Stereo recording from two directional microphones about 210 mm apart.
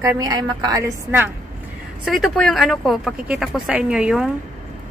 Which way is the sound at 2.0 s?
Centre (ahead or behind).